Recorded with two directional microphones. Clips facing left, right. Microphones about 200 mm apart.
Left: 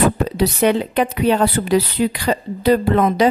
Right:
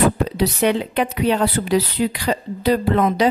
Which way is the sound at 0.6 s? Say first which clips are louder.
Left 3 dB; 45° left (ahead or behind).